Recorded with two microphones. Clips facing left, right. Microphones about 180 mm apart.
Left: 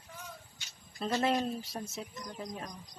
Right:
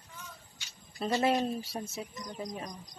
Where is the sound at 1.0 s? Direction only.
5° right (ahead or behind).